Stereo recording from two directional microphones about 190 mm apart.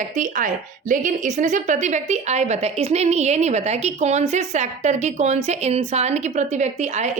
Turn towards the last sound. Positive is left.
turn(degrees=-35)  # may be behind; listen again after turning